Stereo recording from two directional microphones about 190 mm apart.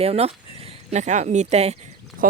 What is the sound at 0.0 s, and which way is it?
A woman's voice, 30° right (ahead or behind).